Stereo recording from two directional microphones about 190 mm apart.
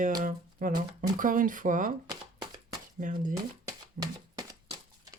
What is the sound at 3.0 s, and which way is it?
Speech, 45° right (ahead or behind).